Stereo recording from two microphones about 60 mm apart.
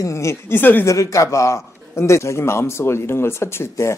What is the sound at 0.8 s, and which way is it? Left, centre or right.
A man's voice, left.